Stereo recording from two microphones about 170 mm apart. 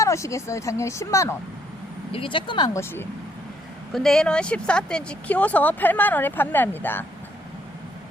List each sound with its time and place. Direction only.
0.0 s speech: 15° left (ahead or behind)
2.1 s speech: 30° left (ahead or behind); by 3.1 s 15° left (ahead or behind)
3.9 s speech: centre (ahead or behind)